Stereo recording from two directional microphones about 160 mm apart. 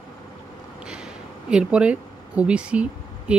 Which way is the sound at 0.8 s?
5° right (ahead or behind).